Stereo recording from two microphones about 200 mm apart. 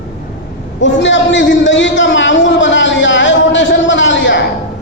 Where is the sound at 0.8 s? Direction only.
65° left (ahead or behind).